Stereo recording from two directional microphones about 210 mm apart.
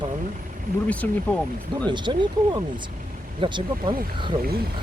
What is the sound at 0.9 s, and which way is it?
Speech, 5° left (ahead or behind).